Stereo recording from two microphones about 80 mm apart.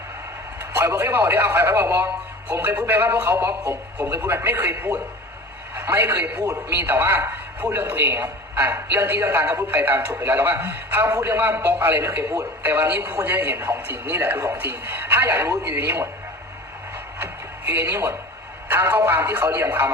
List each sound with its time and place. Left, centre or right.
0.6 s a man's voice: right
17.7 s a man's voice: right